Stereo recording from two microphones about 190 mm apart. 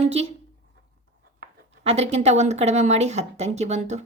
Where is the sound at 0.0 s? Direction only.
35° right (ahead or behind).